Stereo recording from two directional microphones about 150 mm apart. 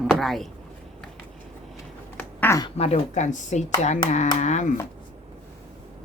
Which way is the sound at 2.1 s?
10° left (ahead or behind).